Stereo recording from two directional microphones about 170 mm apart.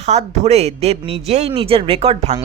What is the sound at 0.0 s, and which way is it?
A woman's voice, 40° right (ahead or behind).